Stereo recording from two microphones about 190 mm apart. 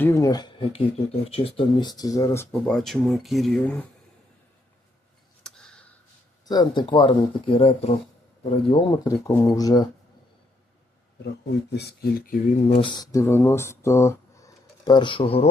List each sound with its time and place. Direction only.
0.0 s speech: 15° left (ahead or behind)
2.5 s speech: 5° left (ahead or behind)
5.4 s a sound: 5° left (ahead or behind)
6.4 s speech: 20° left (ahead or behind)
9.1 s speech: 15° left (ahead or behind)
11.7 s speech: 60° left (ahead or behind)
12.6 s speech: 30° left (ahead or behind)